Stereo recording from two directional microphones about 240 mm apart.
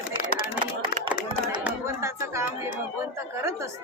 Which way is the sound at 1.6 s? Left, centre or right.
Centre.